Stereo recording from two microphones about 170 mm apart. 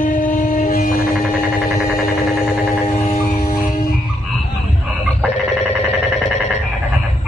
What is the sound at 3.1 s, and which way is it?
Vehicle, 55° left (ahead or behind).